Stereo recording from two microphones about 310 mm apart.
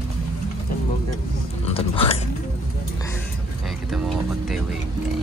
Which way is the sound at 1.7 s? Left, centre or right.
Centre.